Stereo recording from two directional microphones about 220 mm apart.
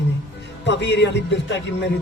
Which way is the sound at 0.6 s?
55° left (ahead or behind).